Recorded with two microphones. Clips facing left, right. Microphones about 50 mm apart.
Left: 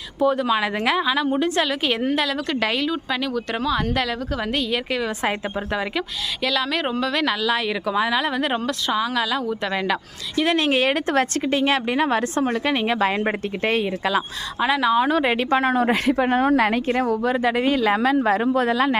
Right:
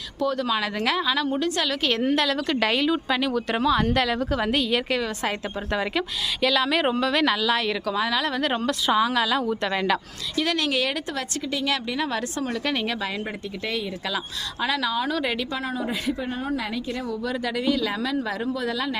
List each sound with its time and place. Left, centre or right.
0.2 s speech: left; by 5.0 s centre
6.4 s speech: centre
8.6 s speech: centre
10.4 s a woman's voice: left
13.0 s a woman's voice: left
14.6 s speech: left
15.4 s a woman's voice: left
17.3 s a woman's voice: left